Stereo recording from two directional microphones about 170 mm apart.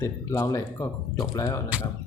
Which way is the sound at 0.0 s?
15° left (ahead or behind).